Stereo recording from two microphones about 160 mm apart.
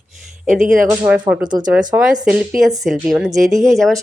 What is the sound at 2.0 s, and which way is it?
Speech, 10° right (ahead or behind).